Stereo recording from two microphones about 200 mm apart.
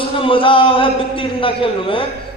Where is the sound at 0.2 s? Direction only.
25° left (ahead or behind).